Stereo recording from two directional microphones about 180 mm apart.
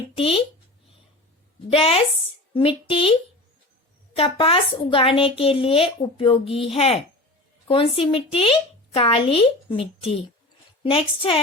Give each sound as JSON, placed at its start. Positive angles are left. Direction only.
{"t": 0.2, "sound": "a woman's voice", "side_deg": 30}
{"t": 1.7, "sound": "a woman's voice", "side_deg": 30}